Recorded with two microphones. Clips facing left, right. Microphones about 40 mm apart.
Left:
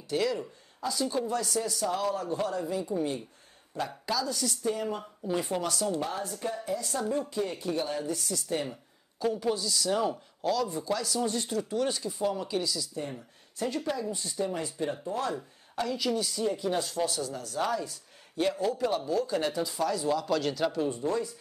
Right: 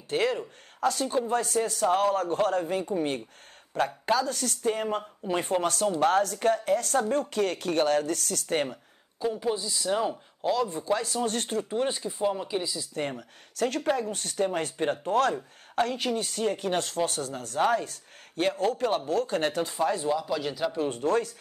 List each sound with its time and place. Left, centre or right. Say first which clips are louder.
0.1 s speech: right 2 dB; right
0.7 s speech: right 6 dB; right
1.0 s speech: right 3 dB; right
5.9 s speech: right 9 dB; right
9.2 s speech: even; centre
10.6 s speech: right 3 dB; right
11.2 s speech: right 2 dB; right
13.7 s speech: right 5 dB; right
14.1 s speech: right 4 dB; right
15.7 s speech: right 3 dB; right
19.8 s speech: right 3 dB; right
20.1 s speech: even; centre
20.9 s speech: right 4 dB; right